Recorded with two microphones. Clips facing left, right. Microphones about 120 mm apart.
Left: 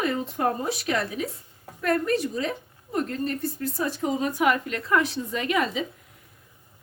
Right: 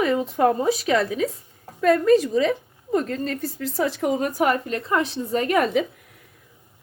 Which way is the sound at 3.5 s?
90° right.